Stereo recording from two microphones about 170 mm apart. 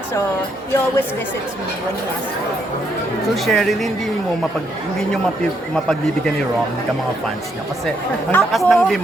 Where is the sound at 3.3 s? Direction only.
Centre (ahead or behind).